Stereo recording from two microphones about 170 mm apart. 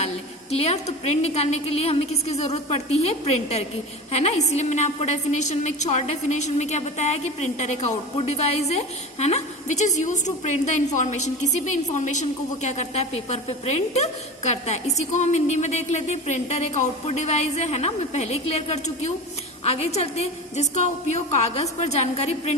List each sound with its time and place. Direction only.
0.5 s a woman's voice: 35° left (ahead or behind)